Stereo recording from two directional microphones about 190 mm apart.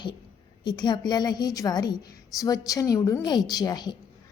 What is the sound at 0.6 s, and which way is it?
A woman's voice, 20° left (ahead or behind).